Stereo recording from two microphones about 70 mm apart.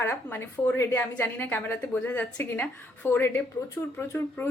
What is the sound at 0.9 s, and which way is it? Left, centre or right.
Speech, left.